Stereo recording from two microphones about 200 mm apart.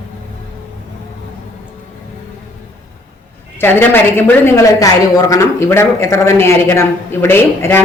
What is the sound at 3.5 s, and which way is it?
A woman's voice, 10° left (ahead or behind).